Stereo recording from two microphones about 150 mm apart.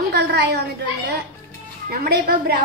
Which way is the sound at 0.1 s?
90° right.